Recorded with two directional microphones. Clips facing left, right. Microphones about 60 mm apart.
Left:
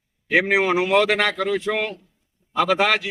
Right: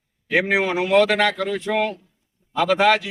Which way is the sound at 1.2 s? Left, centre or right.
Centre.